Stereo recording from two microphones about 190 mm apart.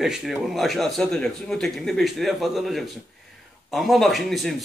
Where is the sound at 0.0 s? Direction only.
Centre (ahead or behind).